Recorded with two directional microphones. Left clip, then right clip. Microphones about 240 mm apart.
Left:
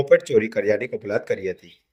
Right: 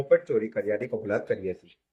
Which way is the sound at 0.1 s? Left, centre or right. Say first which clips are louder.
Left 5 dB; left.